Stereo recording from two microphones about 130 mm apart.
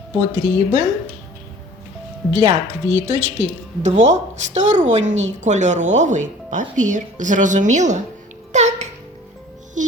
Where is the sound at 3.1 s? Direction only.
65° right (ahead or behind).